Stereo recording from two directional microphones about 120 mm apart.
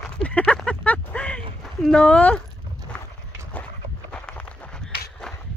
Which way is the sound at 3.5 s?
10° left (ahead or behind).